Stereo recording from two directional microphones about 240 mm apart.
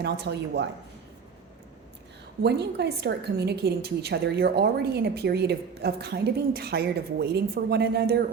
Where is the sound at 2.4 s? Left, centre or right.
Right.